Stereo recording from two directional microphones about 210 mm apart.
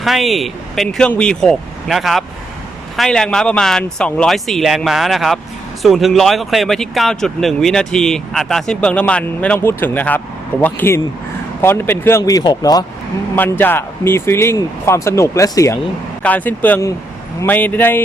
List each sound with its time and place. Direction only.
0.0 s speech: centre (ahead or behind)